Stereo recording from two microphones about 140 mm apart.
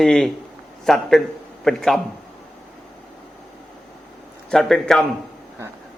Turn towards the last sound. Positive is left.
turn(degrees=5)  # may be behind; listen again after turning